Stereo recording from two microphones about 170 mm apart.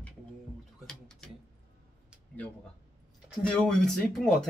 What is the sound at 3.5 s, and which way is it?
Speech, 5° left (ahead or behind).